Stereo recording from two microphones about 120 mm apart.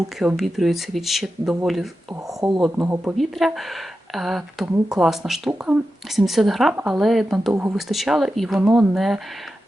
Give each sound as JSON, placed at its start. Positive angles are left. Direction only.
{"t": 0.3, "sound": "speech", "side_deg": 0}
{"t": 2.7, "sound": "speech", "side_deg": -20}
{"t": 3.2, "sound": "speech", "side_deg": 0}
{"t": 7.5, "sound": "speech", "side_deg": -20}
{"t": 7.8, "sound": "speech", "side_deg": 0}